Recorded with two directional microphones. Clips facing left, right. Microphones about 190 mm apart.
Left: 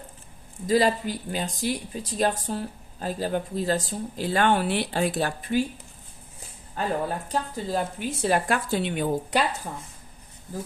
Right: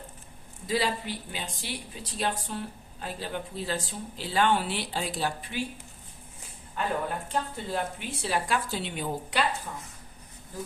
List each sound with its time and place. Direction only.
0.7 s speech: 45° left (ahead or behind)
6.8 s speech: 40° left (ahead or behind); by 9.4 s 55° left (ahead or behind)
9.7 s speech: 45° left (ahead or behind)